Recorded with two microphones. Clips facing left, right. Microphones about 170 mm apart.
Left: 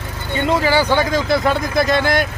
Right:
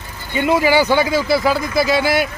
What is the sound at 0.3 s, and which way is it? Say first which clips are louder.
Speech: right 2 dB; 10° right (ahead or behind).